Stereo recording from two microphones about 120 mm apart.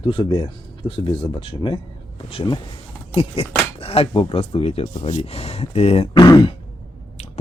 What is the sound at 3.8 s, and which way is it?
Speech, 55° left (ahead or behind).